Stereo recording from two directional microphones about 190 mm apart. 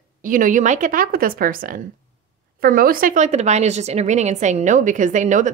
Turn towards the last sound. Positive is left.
turn(degrees=-40)  # may be behind; listen again after turning